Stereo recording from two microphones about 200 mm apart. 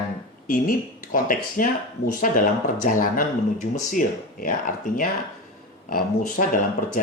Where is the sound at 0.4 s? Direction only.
45° left (ahead or behind).